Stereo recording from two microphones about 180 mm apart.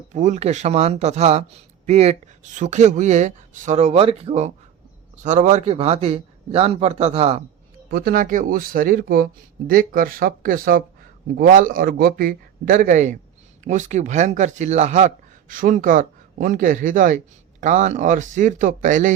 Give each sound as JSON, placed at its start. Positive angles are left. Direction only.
{"t": 0.1, "sound": "speech", "side_deg": -40}
{"t": 7.9, "sound": "speech", "side_deg": -60}